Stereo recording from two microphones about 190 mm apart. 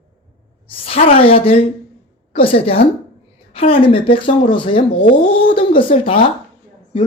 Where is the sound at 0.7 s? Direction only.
30° left (ahead or behind).